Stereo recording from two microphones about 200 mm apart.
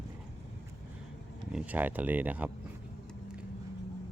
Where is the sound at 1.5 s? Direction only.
5° right (ahead or behind).